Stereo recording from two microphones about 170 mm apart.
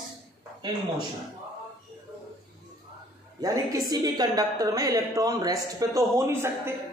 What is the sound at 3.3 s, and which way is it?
A man's voice, 20° right (ahead or behind).